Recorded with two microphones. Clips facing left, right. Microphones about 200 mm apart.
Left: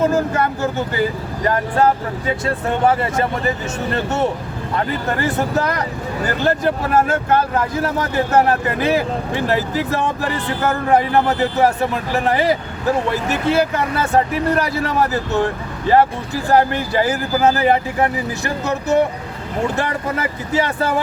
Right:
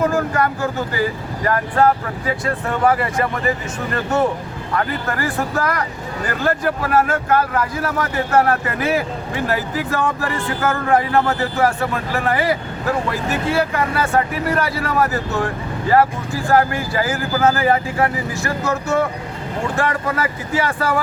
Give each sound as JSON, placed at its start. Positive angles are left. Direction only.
{"t": 0.0, "sound": "speech", "side_deg": 20}
{"t": 16.5, "sound": "speech", "side_deg": 20}